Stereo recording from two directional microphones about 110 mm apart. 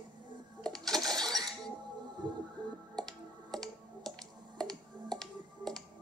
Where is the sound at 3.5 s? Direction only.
5° left (ahead or behind).